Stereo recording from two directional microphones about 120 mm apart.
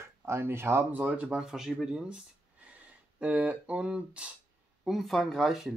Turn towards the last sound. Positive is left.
turn(degrees=0)  # may be behind; listen again after turning